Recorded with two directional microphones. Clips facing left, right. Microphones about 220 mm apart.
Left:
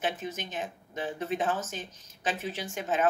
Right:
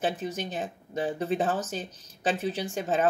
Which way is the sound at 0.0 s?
35° right (ahead or behind).